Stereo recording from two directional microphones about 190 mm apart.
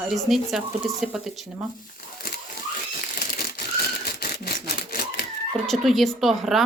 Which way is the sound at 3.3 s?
50° left (ahead or behind).